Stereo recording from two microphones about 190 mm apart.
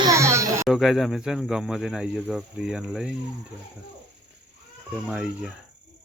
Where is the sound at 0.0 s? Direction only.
15° right (ahead or behind).